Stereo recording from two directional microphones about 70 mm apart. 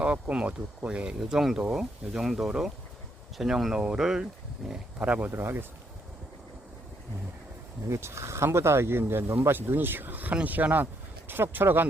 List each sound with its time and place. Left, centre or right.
0.0 s speech: centre
5.3 s speech: right
7.9 s speech: right